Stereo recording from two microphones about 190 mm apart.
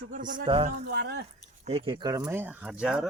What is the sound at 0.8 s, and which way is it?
Speech, 60° right (ahead or behind).